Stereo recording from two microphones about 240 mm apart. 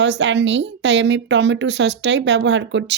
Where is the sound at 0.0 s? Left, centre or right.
Right.